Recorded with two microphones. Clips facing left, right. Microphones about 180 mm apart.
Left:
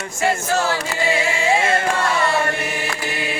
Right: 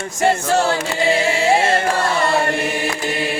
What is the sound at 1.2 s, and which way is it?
Music, 35° right (ahead or behind).